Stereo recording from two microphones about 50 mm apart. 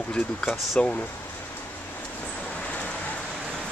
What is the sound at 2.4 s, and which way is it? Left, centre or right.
Vehicle, left.